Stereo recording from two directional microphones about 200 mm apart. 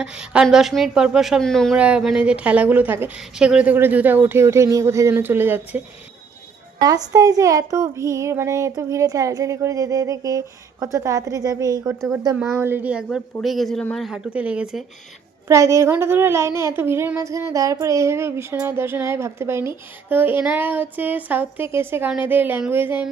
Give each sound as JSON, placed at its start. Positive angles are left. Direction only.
{"t": 0.0, "sound": "speech", "side_deg": -5}
{"t": 6.8, "sound": "speech", "side_deg": -20}
{"t": 15.4, "sound": "speech", "side_deg": -15}